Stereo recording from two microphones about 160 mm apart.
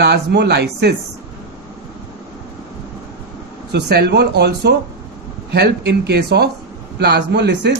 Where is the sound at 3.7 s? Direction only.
90° right.